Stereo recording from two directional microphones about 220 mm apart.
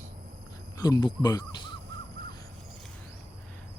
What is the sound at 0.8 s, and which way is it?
Speech, 15° left (ahead or behind).